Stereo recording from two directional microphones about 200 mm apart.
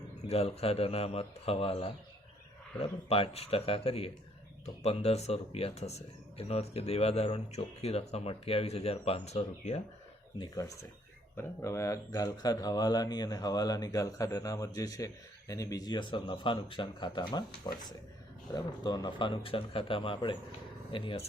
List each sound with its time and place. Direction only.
0.3 s speech: 30° left (ahead or behind)
10.3 s speech: 20° left (ahead or behind)